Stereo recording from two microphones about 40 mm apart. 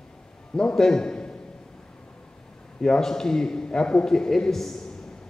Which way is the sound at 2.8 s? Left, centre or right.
Centre.